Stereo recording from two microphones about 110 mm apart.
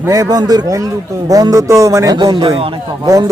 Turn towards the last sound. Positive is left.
turn(degrees=-55)  # may be behind; listen again after turning